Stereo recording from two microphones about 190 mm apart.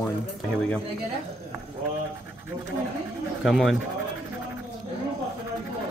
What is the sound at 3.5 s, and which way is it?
Speech, centre (ahead or behind).